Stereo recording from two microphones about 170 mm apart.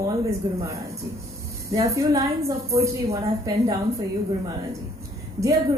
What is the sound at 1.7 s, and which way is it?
A woman's voice, 20° right (ahead or behind).